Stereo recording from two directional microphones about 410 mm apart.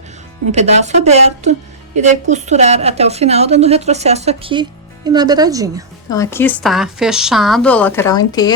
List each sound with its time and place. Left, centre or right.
0.5 s a woman's voice: centre
6.1 s a woman's voice: centre